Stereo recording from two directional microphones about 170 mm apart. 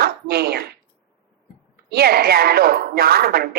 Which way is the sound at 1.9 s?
65° right (ahead or behind).